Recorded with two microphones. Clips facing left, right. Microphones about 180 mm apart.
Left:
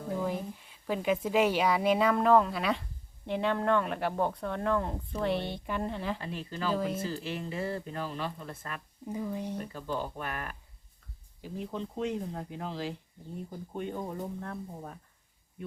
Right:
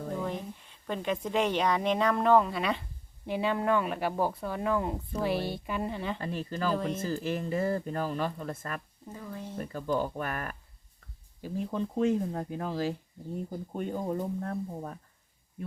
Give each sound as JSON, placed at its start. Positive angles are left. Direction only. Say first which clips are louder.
{"t": 0.2, "sound": "a woman's voice", "louder": "left 1 dB", "side_deg": 5}
{"t": 6.1, "sound": "speech", "louder": "right 4 dB", "side_deg": -45}
{"t": 6.7, "sound": "speech", "louder": "even", "side_deg": 5}
{"t": 7.0, "sound": "speech", "louder": "right 4 dB", "side_deg": -45}
{"t": 9.0, "sound": "speech", "louder": "left 8 dB", "side_deg": 15}
{"t": 9.7, "sound": "speech", "louder": "right 5 dB", "side_deg": -50}